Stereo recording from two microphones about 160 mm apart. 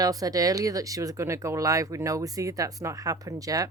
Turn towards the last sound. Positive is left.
turn(degrees=-20)  # may be behind; listen again after turning